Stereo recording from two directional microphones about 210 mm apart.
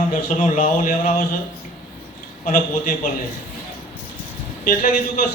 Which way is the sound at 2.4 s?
40° left (ahead or behind).